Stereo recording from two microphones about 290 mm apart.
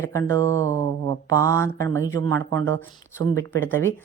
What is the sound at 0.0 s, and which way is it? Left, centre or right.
Speech, centre.